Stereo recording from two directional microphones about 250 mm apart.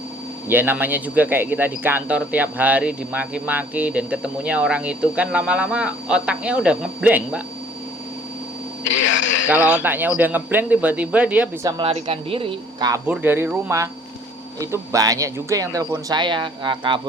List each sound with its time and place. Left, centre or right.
0.4 s speech: centre
8.8 s speech: left
9.6 s speech: centre
11.8 s speech: right
13.1 s speech: centre